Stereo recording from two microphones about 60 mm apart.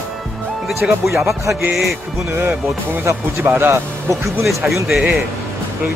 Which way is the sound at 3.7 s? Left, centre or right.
Right.